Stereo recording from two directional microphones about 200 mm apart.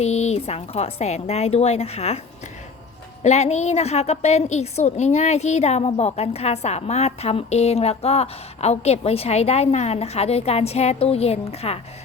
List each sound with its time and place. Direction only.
0.0 s a woman's voice: 35° left (ahead or behind)
3.2 s a woman's voice: 35° left (ahead or behind)